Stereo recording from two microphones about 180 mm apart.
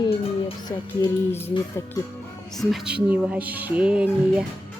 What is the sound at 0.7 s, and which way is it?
Music, 15° left (ahead or behind).